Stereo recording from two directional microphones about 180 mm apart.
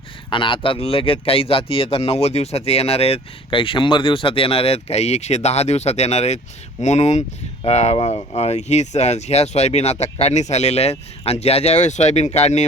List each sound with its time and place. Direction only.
0.3 s speech: 25° left (ahead or behind)